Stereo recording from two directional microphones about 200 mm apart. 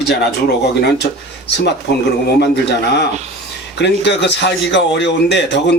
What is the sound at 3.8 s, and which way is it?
Speech, 60° left (ahead or behind).